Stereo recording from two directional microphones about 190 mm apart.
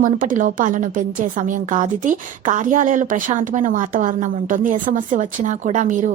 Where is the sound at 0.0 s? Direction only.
45° right (ahead or behind).